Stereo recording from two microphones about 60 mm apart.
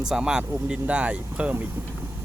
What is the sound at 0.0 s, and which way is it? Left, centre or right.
Speech, centre.